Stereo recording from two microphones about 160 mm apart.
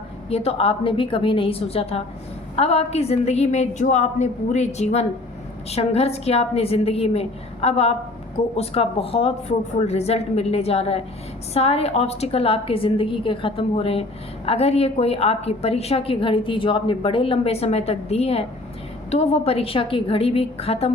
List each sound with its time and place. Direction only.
0.3 s a woman's voice: 40° left (ahead or behind)